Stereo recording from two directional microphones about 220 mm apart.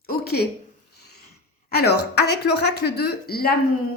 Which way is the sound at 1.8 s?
45° left (ahead or behind).